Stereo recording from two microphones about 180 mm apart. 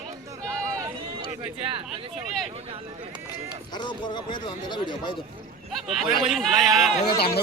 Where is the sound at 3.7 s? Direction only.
25° left (ahead or behind).